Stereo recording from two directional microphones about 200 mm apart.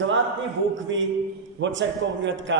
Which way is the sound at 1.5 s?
65° right (ahead or behind).